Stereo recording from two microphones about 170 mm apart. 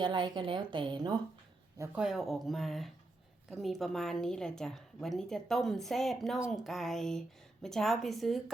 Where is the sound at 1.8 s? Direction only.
5° right (ahead or behind).